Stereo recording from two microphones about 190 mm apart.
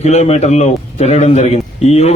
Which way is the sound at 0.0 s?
35° left (ahead or behind).